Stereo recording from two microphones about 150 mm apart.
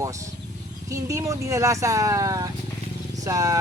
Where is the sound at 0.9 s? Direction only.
20° right (ahead or behind).